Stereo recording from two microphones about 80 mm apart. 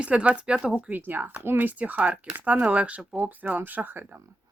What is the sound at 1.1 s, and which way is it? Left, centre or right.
Speech, right.